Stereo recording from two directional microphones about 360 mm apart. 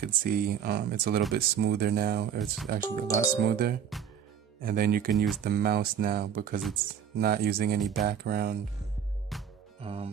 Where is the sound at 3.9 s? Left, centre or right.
Centre.